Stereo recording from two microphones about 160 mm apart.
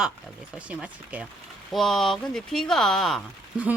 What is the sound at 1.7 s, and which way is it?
Speech, centre (ahead or behind).